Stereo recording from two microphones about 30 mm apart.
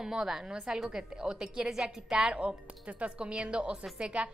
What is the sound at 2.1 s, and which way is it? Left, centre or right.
Speech, right.